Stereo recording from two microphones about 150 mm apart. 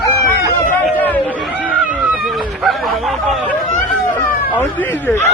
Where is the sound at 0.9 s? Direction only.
10° left (ahead or behind).